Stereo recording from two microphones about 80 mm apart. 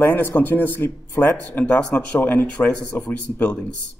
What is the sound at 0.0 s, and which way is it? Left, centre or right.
Speech, left.